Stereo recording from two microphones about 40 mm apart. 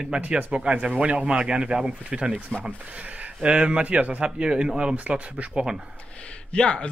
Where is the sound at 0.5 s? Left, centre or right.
Right.